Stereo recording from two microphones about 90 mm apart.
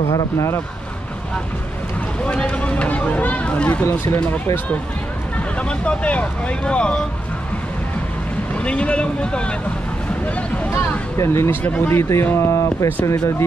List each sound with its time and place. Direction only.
2.2 s a sound: 10° left (ahead or behind)
3.8 s speech: 20° left (ahead or behind)
5.6 s speech: 15° left (ahead or behind)
8.5 s speech: 15° left (ahead or behind)
11.1 s speech: 30° left (ahead or behind)
11.6 s speech: 15° left (ahead or behind)
11.9 s speech: 30° left (ahead or behind)